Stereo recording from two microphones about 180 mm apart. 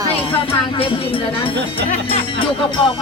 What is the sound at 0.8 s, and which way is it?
Speech, 30° left (ahead or behind).